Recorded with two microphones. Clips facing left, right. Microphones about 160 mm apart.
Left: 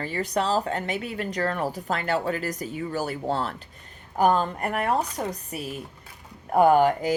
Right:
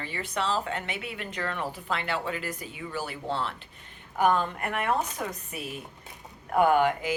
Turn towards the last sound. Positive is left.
turn(degrees=40)  # may be behind; listen again after turning